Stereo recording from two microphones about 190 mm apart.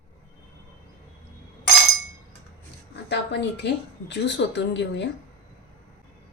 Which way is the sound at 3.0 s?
65° left (ahead or behind).